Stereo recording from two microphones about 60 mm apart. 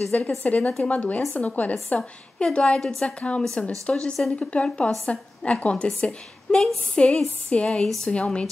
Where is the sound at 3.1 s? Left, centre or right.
Centre.